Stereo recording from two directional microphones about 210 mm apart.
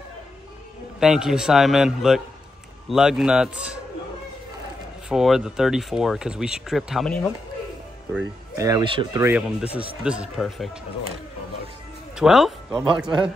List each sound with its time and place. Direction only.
0.9 s speech: centre (ahead or behind)
5.1 s speech: centre (ahead or behind)
8.5 s speech: 15° right (ahead or behind)
9.8 s speech: 5° right (ahead or behind)
12.2 s speech: centre (ahead or behind)